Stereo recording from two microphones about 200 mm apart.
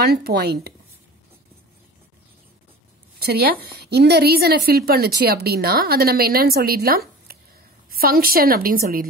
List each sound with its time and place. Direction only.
0.0 s a woman's voice: 55° right (ahead or behind)
3.2 s a woman's voice: 50° right (ahead or behind)